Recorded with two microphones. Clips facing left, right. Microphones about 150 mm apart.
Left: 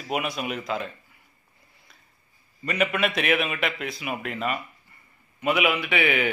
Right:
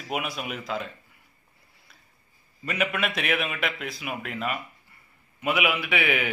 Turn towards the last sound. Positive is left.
turn(degrees=-5)  # may be behind; listen again after turning